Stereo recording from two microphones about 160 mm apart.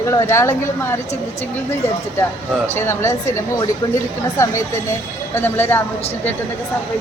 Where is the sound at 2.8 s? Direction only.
15° left (ahead or behind).